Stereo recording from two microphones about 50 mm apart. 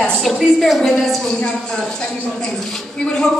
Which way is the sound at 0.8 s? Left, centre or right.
Centre.